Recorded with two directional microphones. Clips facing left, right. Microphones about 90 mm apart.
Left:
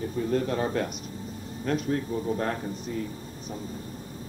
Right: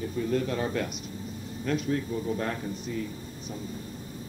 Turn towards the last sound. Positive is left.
turn(degrees=40)  # may be behind; listen again after turning